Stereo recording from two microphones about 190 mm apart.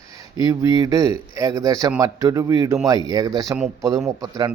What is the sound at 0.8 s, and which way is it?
Speech, 20° right (ahead or behind).